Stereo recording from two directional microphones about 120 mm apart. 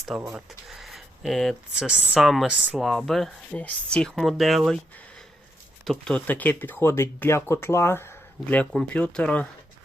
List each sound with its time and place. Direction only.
0.1 s speech: 5° right (ahead or behind)
5.8 s speech: 5° left (ahead or behind); by 8.0 s 20° left (ahead or behind)
8.4 s speech: 10° left (ahead or behind)